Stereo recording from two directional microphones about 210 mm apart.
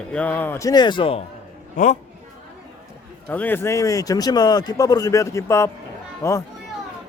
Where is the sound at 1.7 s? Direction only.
35° left (ahead or behind).